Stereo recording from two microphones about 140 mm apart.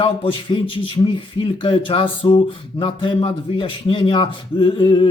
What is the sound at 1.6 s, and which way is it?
Speech, 35° left (ahead or behind).